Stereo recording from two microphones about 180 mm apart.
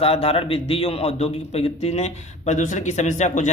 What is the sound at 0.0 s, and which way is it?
A man's voice, 30° left (ahead or behind).